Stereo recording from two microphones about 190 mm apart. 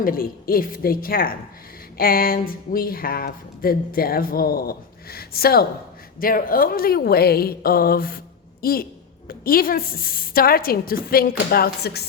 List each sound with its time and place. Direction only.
0.0 s speech: 50° left (ahead or behind)